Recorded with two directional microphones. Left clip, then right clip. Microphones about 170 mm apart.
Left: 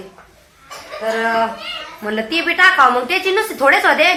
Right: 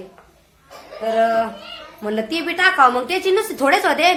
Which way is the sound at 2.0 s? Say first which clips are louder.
Left 3 dB; 75° right (ahead or behind).